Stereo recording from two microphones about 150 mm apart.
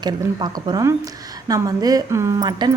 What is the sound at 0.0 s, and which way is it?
Speech, 30° right (ahead or behind).